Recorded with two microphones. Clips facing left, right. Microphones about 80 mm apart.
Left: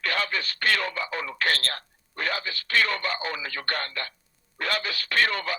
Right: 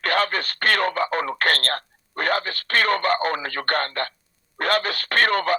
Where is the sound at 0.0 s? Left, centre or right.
Right.